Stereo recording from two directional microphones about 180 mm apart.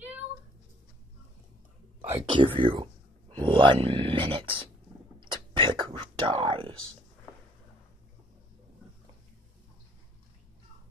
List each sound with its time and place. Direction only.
2.1 s speech: 30° right (ahead or behind)
5.2 s whispering: 25° right (ahead or behind)